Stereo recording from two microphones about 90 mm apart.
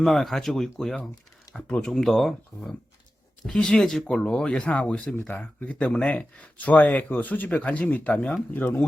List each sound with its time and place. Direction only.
0.0 s speech: 5° left (ahead or behind)
3.4 s speech: 10° left (ahead or behind)